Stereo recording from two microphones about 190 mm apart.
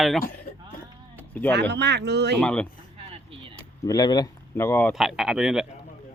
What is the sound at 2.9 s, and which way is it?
Vehicle, 30° right (ahead or behind).